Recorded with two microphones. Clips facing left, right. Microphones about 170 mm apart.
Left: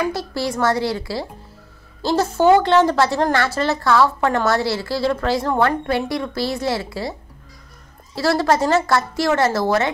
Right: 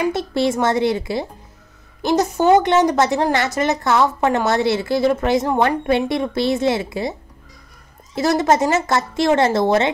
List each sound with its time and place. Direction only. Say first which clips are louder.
0.0 s a woman's voice: right 4 dB; 20° right (ahead or behind)